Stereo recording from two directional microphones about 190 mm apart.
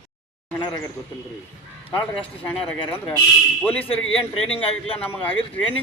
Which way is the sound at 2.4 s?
10° left (ahead or behind).